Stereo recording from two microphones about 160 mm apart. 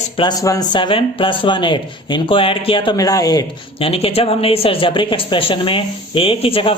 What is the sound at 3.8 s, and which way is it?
Speech, 35° left (ahead or behind).